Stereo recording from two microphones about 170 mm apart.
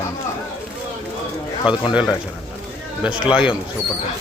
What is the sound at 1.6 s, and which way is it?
Speech, 5° right (ahead or behind).